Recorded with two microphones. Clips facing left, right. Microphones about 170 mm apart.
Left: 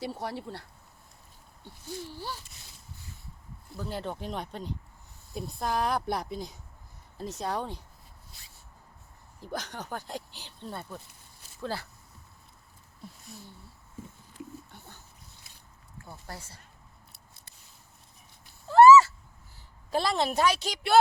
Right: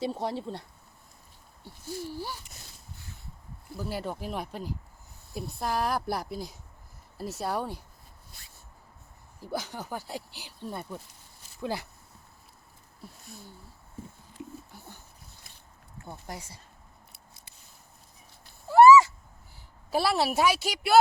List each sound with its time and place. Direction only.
0.0 s speech: 20° right (ahead or behind)
1.6 s speech: 10° right (ahead or behind)
3.8 s a woman's voice: 5° right (ahead or behind)
8.3 s a sound: 50° right (ahead or behind)
9.4 s speech: 10° right (ahead or behind)
14.7 s a sound: 10° right (ahead or behind)
16.0 s speech: 15° right (ahead or behind)
18.7 s a sound: 10° right (ahead or behind)
19.9 s speech: 10° right (ahead or behind)